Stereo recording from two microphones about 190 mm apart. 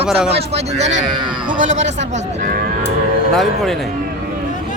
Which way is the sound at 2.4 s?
50° right (ahead or behind).